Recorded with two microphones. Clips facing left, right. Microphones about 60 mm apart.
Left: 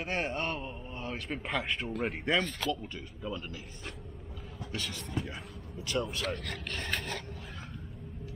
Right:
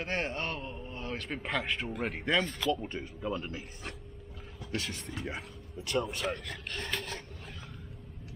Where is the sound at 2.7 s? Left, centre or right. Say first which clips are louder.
Right 4 dB; right.